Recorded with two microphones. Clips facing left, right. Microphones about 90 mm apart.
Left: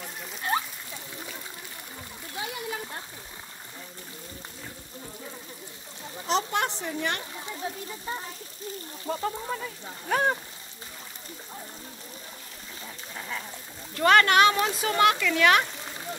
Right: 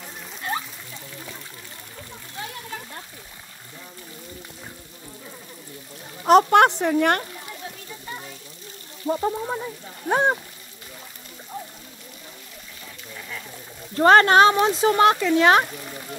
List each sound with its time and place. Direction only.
6.2 s a woman's voice: 60° right (ahead or behind)
7.6 s a sound: 25° left (ahead or behind)
8.1 s frying: 25° left (ahead or behind)
9.0 s speech: 25° right (ahead or behind)
13.1 s a sound: 30° left (ahead or behind)
13.9 s speech: 35° right (ahead or behind)